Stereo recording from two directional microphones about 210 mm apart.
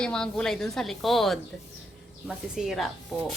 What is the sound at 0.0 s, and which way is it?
Speech, 5° left (ahead or behind).